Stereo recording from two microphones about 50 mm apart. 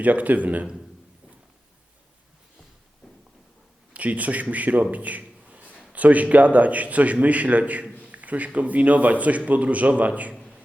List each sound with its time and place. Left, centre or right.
0.0 s a man's voice: right
3.9 s a man's voice: right
8.0 s a sound: right
8.5 s a man's voice: right